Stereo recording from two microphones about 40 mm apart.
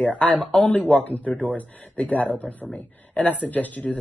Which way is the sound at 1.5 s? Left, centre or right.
Left.